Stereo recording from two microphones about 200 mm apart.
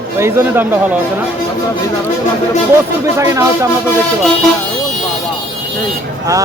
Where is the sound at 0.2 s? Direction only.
10° right (ahead or behind).